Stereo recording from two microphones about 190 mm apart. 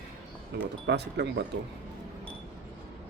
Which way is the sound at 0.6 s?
65° right (ahead or behind).